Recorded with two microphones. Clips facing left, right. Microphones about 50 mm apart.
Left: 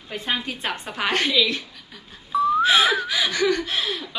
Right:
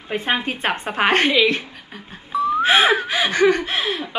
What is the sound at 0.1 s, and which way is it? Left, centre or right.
A woman's voice, right.